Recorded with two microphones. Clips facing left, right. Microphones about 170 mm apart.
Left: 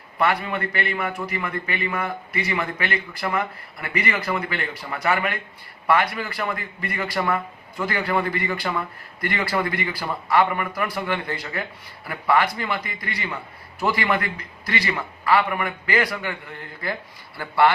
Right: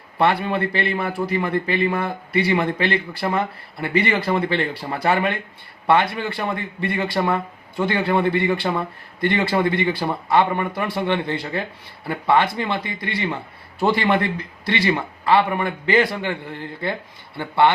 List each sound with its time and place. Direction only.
0.2 s a man's voice: 30° right (ahead or behind)